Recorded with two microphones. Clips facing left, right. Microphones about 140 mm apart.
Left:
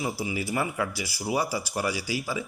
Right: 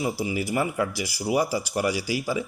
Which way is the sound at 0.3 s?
20° right (ahead or behind).